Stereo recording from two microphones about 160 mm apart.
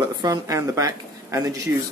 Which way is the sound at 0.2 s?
20° right (ahead or behind).